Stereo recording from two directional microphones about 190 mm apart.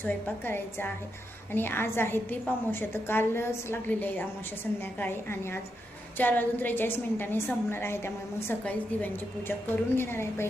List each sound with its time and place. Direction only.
0.0 s a woman's voice: 10° left (ahead or behind)